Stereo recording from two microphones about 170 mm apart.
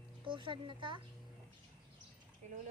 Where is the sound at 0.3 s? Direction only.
30° right (ahead or behind).